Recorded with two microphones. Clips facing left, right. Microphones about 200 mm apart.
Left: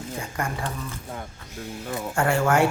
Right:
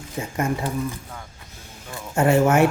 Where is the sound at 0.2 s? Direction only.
20° right (ahead or behind).